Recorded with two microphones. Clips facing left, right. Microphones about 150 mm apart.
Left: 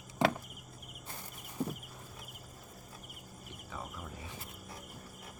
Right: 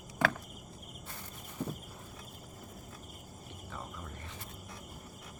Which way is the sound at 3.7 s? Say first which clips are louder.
Left 1 dB; centre (ahead or behind).